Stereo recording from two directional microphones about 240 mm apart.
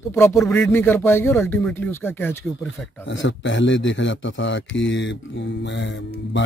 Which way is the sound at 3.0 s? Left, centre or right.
Left.